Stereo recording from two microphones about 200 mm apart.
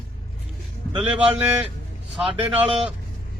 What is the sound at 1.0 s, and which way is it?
Speech, 5° right (ahead or behind).